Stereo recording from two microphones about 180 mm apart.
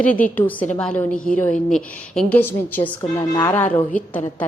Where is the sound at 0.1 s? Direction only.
10° left (ahead or behind).